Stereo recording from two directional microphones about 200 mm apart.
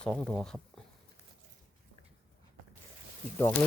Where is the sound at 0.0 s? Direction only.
5° left (ahead or behind).